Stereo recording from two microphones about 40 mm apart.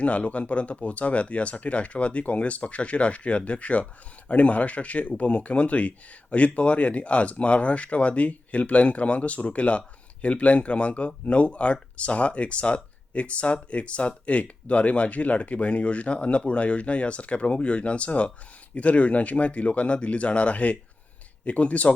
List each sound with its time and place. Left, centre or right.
0.0 s speech: left